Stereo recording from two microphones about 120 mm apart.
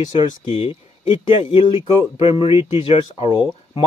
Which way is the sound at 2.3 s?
55° left (ahead or behind).